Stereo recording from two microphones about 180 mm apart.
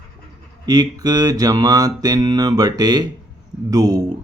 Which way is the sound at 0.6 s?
20° right (ahead or behind).